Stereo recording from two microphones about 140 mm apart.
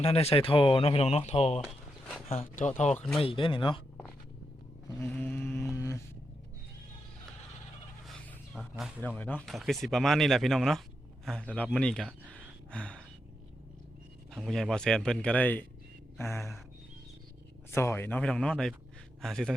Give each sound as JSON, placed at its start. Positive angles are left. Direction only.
{"t": 0.0, "sound": "speech", "side_deg": 45}
{"t": 1.6, "sound": "walk", "side_deg": 0}
{"t": 2.6, "sound": "speech", "side_deg": 60}
{"t": 3.2, "sound": "speech", "side_deg": 40}
{"t": 4.9, "sound": "a sound", "side_deg": 20}
{"t": 5.7, "sound": "a sound", "side_deg": 20}
{"t": 8.5, "sound": "music", "side_deg": 0}
{"t": 9.0, "sound": "speech", "side_deg": 10}
{"t": 12.3, "sound": "a sound", "side_deg": 5}
{"t": 14.3, "sound": "speech", "side_deg": 0}
{"t": 17.7, "sound": "speech", "side_deg": 20}